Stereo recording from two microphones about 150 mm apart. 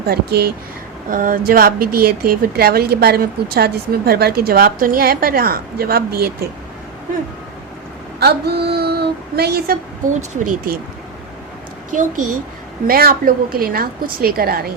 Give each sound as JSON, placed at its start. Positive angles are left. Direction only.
{"t": 0.0, "sound": "speech", "side_deg": -90}
{"t": 1.1, "sound": "speech", "side_deg": -65}
{"t": 8.2, "sound": "speech", "side_deg": -90}
{"t": 10.1, "sound": "speech", "side_deg": -60}
{"t": 12.9, "sound": "a woman's voice", "side_deg": -80}